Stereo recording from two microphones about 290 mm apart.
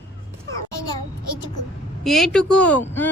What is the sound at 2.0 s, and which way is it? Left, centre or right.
Speech, centre.